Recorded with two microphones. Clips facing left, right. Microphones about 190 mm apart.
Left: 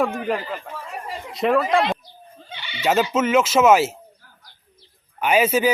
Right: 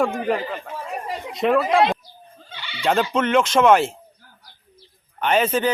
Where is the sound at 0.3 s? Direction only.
Centre (ahead or behind).